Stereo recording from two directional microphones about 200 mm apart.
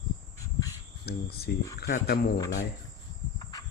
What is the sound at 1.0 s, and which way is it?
Cricket, 50° left (ahead or behind).